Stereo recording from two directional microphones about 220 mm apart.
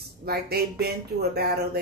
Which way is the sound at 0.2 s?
45° right (ahead or behind).